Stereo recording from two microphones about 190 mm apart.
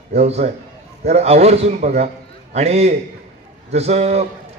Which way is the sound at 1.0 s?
35° right (ahead or behind).